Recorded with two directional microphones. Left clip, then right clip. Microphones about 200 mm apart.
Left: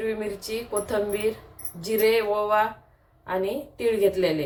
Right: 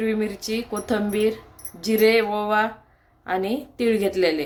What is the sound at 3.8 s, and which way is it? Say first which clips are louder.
Speech: right 1 dB; 60° right (ahead or behind).